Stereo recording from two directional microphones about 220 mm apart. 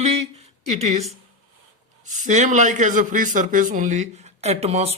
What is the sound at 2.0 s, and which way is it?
A man's voice, 35° right (ahead or behind).